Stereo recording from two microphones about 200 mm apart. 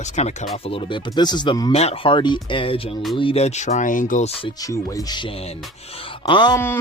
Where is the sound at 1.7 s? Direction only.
30° left (ahead or behind).